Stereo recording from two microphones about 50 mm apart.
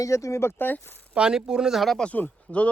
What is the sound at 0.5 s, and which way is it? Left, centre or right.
Speech, left.